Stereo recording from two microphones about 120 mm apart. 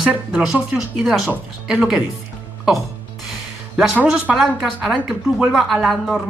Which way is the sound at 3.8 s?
10° right (ahead or behind).